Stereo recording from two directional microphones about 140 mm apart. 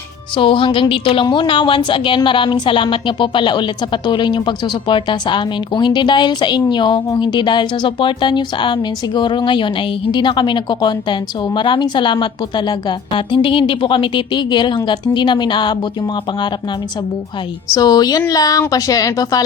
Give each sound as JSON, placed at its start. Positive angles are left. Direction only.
{"t": 0.3, "sound": "a woman's voice", "side_deg": 40}
{"t": 17.7, "sound": "a woman's voice", "side_deg": 30}